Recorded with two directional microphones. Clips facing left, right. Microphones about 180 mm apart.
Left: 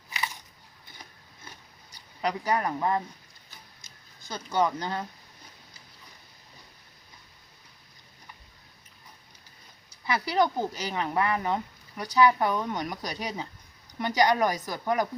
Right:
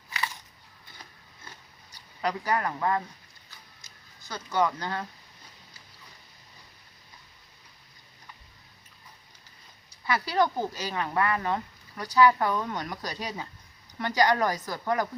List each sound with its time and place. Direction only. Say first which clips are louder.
0.1 s a sound: even; 15° left (ahead or behind)
2.2 s speech: left 1 dB; 15° left (ahead or behind)
4.3 s speech: even; 20° left (ahead or behind)
10.1 s speech: even; 15° left (ahead or behind)